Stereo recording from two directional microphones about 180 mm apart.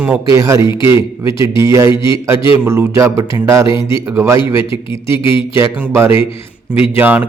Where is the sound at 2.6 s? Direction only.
15° right (ahead or behind).